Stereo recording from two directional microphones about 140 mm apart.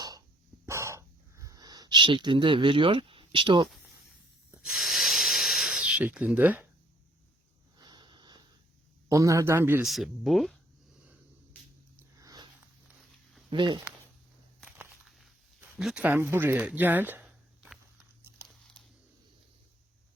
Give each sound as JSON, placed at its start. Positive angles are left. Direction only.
{"t": 0.6, "sound": "a sound", "side_deg": -20}
{"t": 4.6, "sound": "a sound", "side_deg": 0}
{"t": 7.8, "sound": "sniff", "side_deg": -30}
{"t": 9.0, "sound": "speech", "side_deg": -25}
{"t": 9.8, "sound": "speech", "side_deg": 0}
{"t": 11.9, "sound": "biting", "side_deg": -25}
{"t": 13.5, "sound": "speech", "side_deg": -35}
{"t": 15.7, "sound": "speech", "side_deg": 0}
{"t": 18.4, "sound": "crumpling", "side_deg": 0}